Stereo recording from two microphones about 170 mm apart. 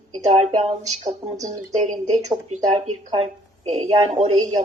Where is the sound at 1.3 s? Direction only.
20° right (ahead or behind).